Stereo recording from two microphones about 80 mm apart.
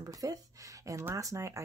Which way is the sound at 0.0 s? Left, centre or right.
Right.